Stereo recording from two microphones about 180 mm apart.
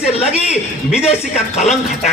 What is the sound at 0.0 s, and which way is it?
A man's voice, 35° left (ahead or behind).